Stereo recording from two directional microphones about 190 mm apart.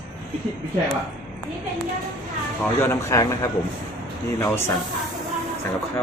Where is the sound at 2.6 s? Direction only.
15° left (ahead or behind).